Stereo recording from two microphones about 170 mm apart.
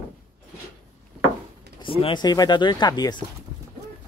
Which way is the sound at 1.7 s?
30° left (ahead or behind).